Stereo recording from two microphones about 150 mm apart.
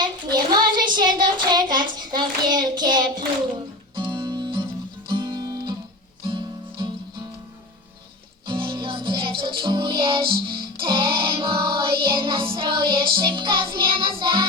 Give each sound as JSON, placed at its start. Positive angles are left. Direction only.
{"t": 0.0, "sound": "child singing", "side_deg": -30}
{"t": 3.9, "sound": "music", "side_deg": -30}
{"t": 8.4, "sound": "music", "side_deg": -35}